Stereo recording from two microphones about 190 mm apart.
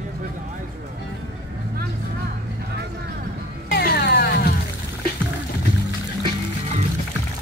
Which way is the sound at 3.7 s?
55° left (ahead or behind).